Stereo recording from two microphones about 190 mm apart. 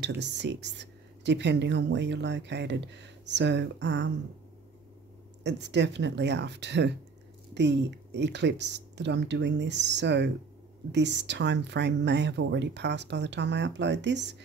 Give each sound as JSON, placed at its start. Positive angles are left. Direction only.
{"t": 0.0, "sound": "speech", "side_deg": -65}
{"t": 5.4, "sound": "speech", "side_deg": -65}